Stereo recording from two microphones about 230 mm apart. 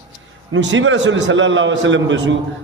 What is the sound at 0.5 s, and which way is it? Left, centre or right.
A man's voice, right.